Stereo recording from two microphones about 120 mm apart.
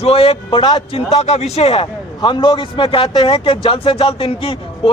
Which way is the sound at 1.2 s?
60° left (ahead or behind).